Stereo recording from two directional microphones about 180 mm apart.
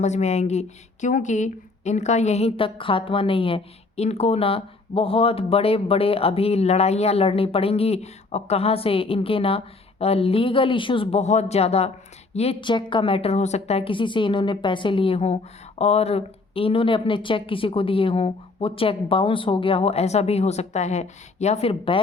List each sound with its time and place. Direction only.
0.0 s a woman's voice: 40° left (ahead or behind)